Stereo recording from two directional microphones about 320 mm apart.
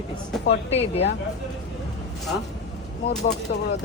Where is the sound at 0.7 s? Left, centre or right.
Centre.